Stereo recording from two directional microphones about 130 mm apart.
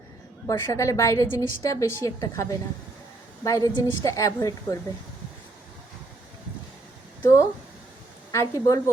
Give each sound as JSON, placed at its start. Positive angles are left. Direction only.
{"t": 0.4, "sound": "a woman's voice", "side_deg": 25}
{"t": 7.2, "sound": "a woman's voice", "side_deg": 20}